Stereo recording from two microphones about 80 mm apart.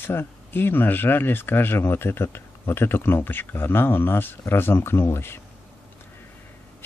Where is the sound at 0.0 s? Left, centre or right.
Left.